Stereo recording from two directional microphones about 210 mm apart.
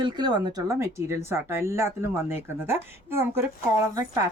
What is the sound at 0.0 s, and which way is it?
A woman's voice, 20° right (ahead or behind).